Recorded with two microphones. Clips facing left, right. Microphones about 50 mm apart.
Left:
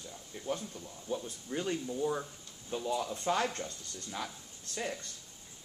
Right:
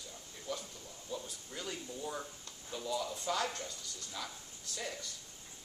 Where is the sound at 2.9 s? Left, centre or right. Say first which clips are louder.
Left 4 dB; left.